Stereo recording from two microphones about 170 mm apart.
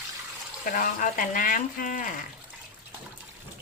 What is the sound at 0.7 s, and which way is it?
Speech, 50° left (ahead or behind).